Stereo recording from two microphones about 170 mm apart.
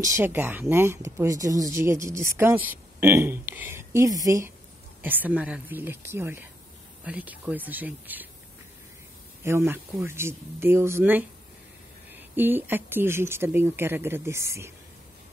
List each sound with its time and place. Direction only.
0.0 s speech: 15° right (ahead or behind)
9.4 s speech: 15° right (ahead or behind)